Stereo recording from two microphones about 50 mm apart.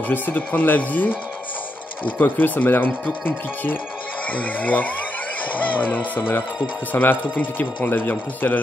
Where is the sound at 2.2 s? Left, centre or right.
Left.